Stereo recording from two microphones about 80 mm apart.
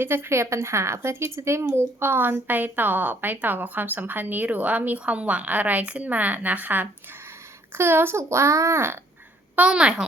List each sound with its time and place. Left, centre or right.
0.0 s speech: right
9.6 s a woman's voice: centre